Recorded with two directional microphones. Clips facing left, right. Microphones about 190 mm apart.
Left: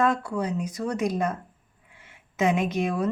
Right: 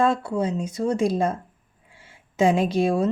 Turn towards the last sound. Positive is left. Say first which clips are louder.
# right 5 dB
turn(degrees=-30)  # may be behind; listen again after turning